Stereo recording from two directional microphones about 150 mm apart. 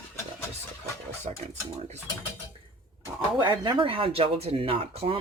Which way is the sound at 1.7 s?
45° right (ahead or behind).